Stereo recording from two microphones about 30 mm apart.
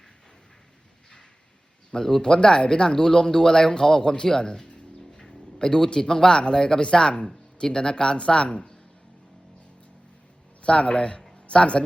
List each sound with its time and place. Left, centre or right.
1.9 s speech: centre; by 8.7 s left
10.6 s speech: left